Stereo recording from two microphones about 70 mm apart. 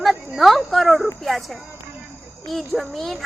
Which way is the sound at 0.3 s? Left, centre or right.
Centre.